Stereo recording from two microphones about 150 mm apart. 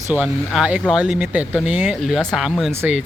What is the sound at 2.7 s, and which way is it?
Speech, 15° right (ahead or behind).